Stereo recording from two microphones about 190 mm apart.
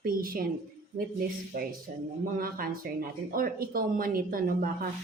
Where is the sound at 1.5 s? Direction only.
45° right (ahead or behind).